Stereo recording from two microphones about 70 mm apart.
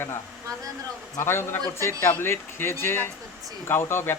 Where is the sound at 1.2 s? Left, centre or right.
Left.